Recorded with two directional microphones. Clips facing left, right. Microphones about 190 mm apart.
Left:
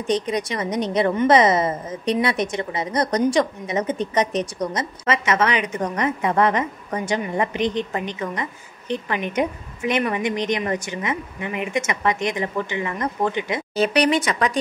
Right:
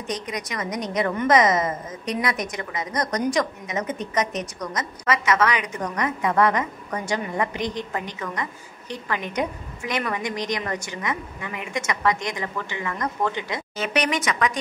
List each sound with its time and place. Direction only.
0.0 s a woman's voice: 30° left (ahead or behind)
13.7 s speech: 35° left (ahead or behind)